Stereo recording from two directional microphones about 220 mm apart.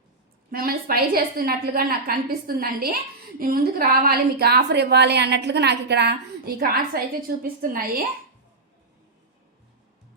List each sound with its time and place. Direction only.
0.5 s a woman's voice: 40° right (ahead or behind)